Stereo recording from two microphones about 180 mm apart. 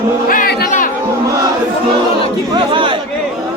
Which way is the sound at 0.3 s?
50° left (ahead or behind).